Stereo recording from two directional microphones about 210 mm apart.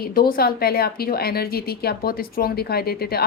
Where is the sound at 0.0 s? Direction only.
45° left (ahead or behind).